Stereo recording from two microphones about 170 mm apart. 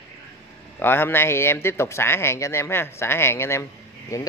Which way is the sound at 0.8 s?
15° left (ahead or behind).